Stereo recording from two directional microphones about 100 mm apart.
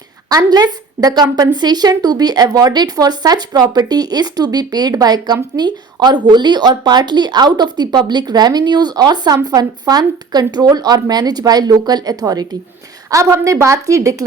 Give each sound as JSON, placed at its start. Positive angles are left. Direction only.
{"t": 0.3, "sound": "a woman's voice", "side_deg": -40}